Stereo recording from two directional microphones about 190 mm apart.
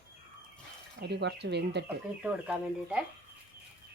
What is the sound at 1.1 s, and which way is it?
Speech, 65° right (ahead or behind).